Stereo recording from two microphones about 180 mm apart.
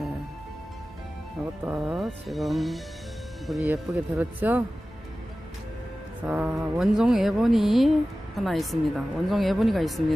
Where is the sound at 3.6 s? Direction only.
15° right (ahead or behind).